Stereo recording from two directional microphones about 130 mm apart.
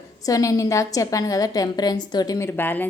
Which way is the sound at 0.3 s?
25° left (ahead or behind).